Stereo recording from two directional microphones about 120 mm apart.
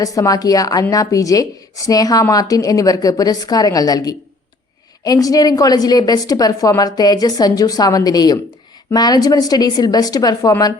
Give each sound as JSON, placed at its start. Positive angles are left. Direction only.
{"t": 0.0, "sound": "a woman's voice", "side_deg": 30}